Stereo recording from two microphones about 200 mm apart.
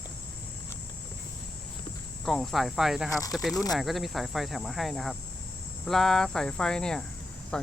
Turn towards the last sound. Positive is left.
turn(degrees=5)  # may be behind; listen again after turning